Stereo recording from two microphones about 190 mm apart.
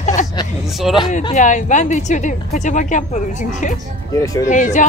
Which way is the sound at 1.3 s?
40° left (ahead or behind).